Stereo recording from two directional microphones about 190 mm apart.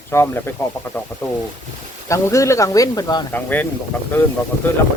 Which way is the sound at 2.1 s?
15° left (ahead or behind).